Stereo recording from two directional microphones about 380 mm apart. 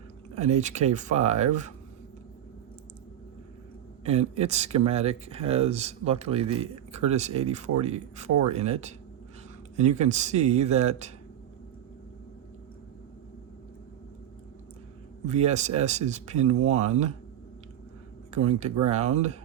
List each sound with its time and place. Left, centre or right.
0.3 s speech: centre
4.0 s speech: centre
15.3 s speech: centre
18.3 s speech: centre